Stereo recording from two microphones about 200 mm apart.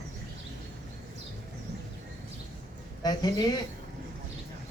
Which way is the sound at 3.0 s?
20° left (ahead or behind).